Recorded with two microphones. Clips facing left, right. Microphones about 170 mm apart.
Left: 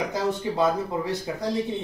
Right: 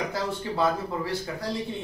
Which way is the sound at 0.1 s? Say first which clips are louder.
Left 4 dB; 20° left (ahead or behind).